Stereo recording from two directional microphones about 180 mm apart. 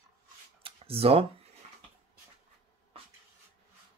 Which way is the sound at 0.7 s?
30° right (ahead or behind).